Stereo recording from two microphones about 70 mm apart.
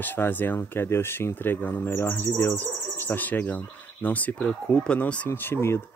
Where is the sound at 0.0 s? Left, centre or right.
Left.